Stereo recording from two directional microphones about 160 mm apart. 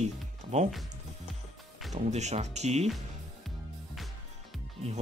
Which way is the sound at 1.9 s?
45° right (ahead or behind).